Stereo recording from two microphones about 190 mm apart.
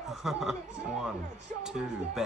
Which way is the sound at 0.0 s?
Centre (ahead or behind).